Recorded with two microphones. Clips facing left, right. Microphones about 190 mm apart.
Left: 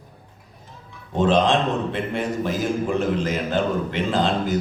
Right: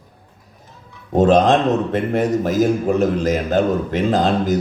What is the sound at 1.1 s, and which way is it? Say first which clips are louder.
A man's voice: right 5 dB; 45° right (ahead or behind).